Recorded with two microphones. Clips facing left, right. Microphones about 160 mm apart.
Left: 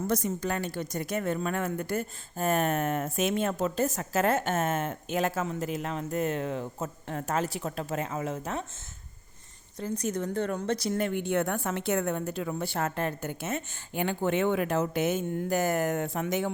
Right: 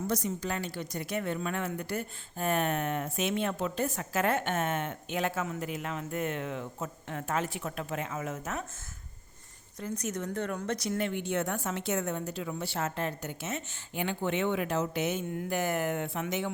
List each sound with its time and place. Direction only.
0.1 s a woman's voice: 50° left (ahead or behind); by 8.6 s 30° left (ahead or behind)
9.8 s a woman's voice: 30° left (ahead or behind)